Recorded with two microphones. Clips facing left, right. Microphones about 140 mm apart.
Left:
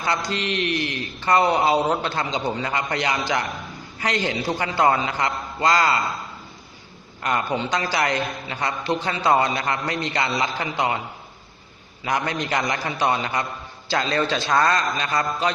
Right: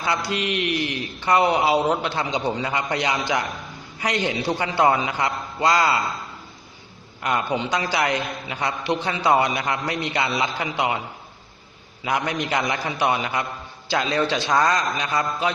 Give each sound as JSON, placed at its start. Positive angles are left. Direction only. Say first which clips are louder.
{"t": 0.0, "sound": "a man's voice", "louder": "even", "side_deg": -10}
{"t": 7.2, "sound": "a man's voice", "louder": "even", "side_deg": -15}
{"t": 12.0, "sound": "a man's voice", "louder": "even", "side_deg": -15}